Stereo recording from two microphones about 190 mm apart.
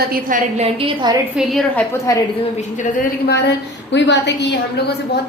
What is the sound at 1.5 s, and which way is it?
Speech, 10° left (ahead or behind).